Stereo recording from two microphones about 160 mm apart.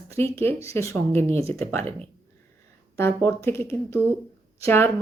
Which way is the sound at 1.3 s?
40° right (ahead or behind).